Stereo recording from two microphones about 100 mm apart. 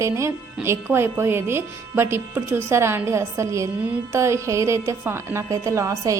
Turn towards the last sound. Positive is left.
turn(degrees=-30)  # may be behind; listen again after turning